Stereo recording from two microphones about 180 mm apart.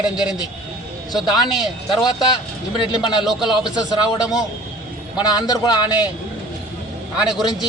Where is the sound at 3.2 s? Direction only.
Centre (ahead or behind).